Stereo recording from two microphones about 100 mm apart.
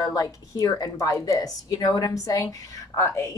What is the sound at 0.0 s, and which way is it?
Speech, 35° left (ahead or behind).